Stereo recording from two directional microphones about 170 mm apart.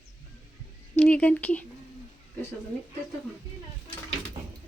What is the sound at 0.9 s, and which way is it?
Speech, 5° left (ahead or behind).